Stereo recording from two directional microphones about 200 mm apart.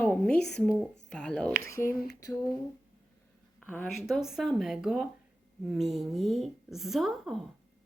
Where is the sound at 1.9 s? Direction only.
45° left (ahead or behind).